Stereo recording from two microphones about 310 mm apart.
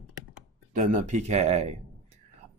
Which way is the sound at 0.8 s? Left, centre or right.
Right.